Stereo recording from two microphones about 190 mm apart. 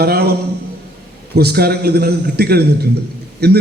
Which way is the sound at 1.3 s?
55° right (ahead or behind).